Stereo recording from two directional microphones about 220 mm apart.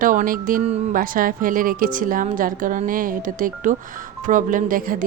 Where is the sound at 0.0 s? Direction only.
40° right (ahead or behind).